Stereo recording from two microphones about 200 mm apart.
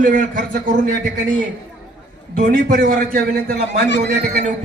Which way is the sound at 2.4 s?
45° right (ahead or behind).